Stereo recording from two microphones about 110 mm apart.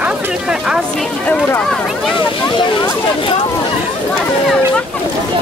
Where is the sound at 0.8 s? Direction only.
5° left (ahead or behind).